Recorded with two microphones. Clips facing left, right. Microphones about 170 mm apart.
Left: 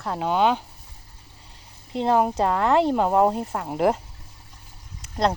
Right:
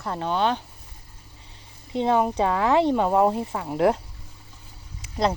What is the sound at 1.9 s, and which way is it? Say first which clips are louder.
Speech: left 1 dB; centre (ahead or behind).